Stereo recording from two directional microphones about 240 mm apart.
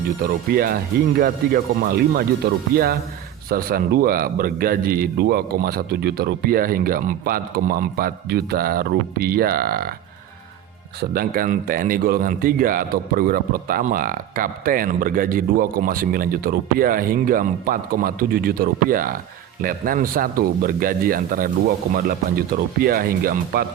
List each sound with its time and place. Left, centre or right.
0.2 s speech: right
11.1 s speech: right